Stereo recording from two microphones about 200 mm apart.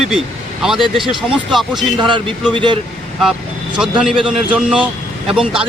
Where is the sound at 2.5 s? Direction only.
25° right (ahead or behind).